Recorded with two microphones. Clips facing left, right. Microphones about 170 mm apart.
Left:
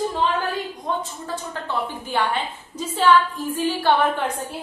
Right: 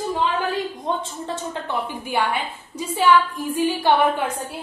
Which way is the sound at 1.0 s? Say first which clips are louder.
Right 2 dB; 25° right (ahead or behind).